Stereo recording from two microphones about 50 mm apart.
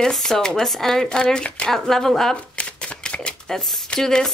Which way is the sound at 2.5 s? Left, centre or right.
Left.